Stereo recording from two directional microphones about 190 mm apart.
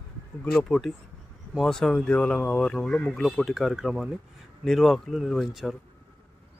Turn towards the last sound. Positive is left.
turn(degrees=0)  # may be behind; listen again after turning